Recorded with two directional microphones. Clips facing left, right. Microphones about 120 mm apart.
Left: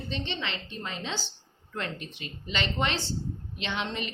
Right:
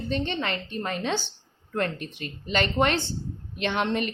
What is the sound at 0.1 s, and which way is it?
A woman's voice, 50° right (ahead or behind).